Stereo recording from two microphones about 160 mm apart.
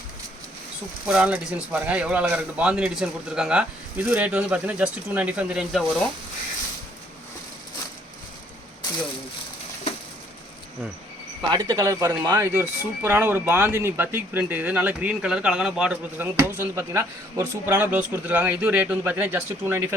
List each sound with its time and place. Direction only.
1.0 s speech: 5° right (ahead or behind)
11.5 s a man's voice: 20° right (ahead or behind)
12.5 s speech: 10° right (ahead or behind)